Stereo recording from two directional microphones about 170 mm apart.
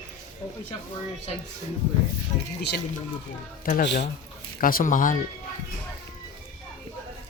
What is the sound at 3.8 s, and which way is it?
Speech, 90° left.